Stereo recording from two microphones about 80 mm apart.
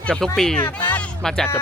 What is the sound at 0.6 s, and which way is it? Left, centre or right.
Speech, left.